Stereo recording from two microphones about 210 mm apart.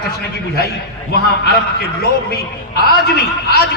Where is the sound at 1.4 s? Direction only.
50° left (ahead or behind).